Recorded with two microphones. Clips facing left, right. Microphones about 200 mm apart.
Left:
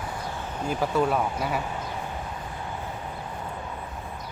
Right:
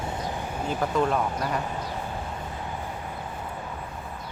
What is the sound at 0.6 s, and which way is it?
Speech, 5° left (ahead or behind).